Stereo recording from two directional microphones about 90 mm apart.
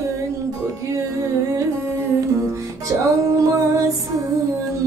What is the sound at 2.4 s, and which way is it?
Music, 40° right (ahead or behind).